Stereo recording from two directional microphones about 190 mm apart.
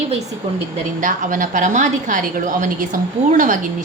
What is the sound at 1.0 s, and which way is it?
A woman's voice, 45° right (ahead or behind).